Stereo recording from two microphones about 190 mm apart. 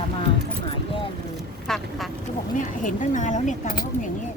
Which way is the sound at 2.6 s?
40° left (ahead or behind).